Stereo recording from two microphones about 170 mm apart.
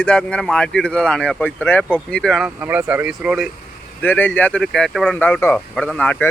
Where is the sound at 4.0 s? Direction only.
10° left (ahead or behind).